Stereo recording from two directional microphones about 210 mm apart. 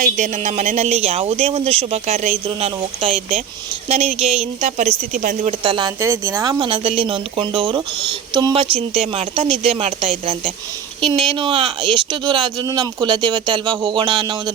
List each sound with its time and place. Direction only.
0.0 s speech: 35° right (ahead or behind)
5.5 s speech: 25° right (ahead or behind)